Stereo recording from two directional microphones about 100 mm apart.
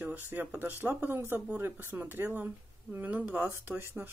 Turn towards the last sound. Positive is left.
turn(degrees=-20)  # may be behind; listen again after turning